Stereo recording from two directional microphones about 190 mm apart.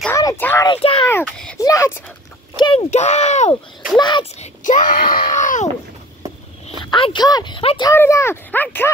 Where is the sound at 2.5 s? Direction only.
30° left (ahead or behind).